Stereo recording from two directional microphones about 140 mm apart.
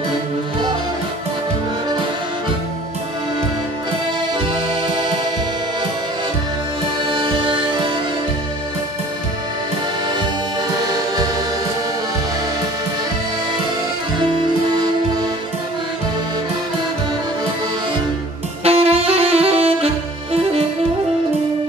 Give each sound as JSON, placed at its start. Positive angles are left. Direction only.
{"t": 4.8, "sound": "music", "side_deg": -35}
{"t": 7.1, "sound": "music", "side_deg": -35}
{"t": 14.2, "sound": "accordion", "side_deg": -35}
{"t": 18.6, "sound": "saxophone", "side_deg": -45}